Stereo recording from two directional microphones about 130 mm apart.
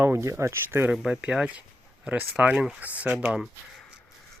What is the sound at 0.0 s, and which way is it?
Speech, 20° right (ahead or behind).